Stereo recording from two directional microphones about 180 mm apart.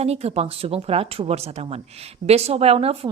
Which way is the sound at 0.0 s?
35° right (ahead or behind).